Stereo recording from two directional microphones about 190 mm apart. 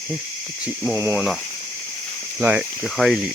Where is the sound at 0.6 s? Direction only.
5° right (ahead or behind).